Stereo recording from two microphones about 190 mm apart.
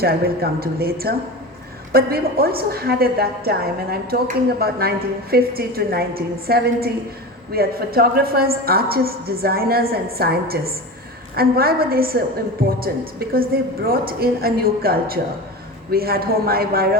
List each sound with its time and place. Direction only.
0.0 s a woman's voice: 55° right (ahead or behind)